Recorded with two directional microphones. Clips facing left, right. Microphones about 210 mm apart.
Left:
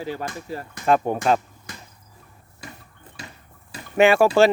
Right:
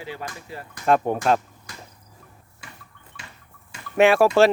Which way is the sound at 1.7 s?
20° left (ahead or behind).